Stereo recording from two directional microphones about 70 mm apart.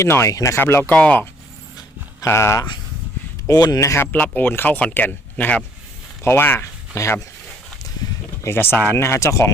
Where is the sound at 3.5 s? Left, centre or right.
Left.